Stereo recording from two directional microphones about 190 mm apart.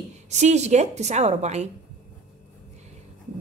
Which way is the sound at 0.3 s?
35° right (ahead or behind).